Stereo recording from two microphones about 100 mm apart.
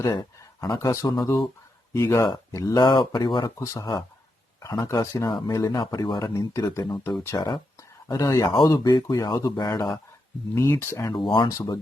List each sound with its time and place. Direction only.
0.6 s speech: 35° left (ahead or behind)
1.9 s speech: 30° left (ahead or behind)
2.7 s speech: 50° left (ahead or behind)
3.6 s speech: 40° left (ahead or behind)
6.3 s speech: 35° left (ahead or behind)
10.5 s speech: 25° left (ahead or behind)
11.0 s speech: 55° left (ahead or behind)
11.4 s speech: 40° left (ahead or behind)